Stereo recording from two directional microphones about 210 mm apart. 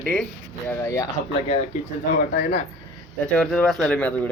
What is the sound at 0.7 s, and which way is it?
Speech, 15° left (ahead or behind).